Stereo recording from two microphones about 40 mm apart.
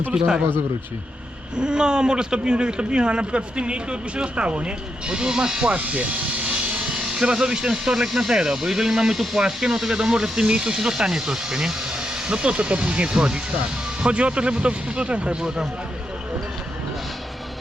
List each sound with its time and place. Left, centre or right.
0.1 s a man's voice: centre
1.5 s a man's voice: right
5.6 s music: right
7.0 s speech: centre
10.4 s a man's voice: right
15.4 s speech: centre